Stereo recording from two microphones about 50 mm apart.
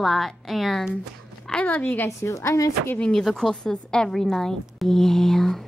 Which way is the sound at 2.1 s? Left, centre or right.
Left.